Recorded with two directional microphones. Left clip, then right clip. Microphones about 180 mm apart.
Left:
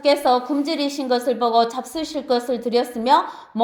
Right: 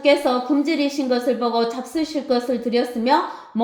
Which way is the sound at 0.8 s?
25° left (ahead or behind).